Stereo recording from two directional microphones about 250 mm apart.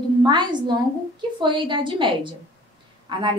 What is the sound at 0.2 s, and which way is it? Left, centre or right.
A woman's voice, centre.